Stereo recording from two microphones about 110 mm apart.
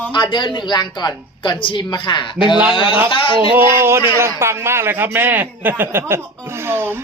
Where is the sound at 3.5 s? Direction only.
20° right (ahead or behind).